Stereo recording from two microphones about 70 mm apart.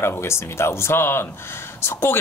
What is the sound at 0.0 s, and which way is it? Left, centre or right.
Speech, left.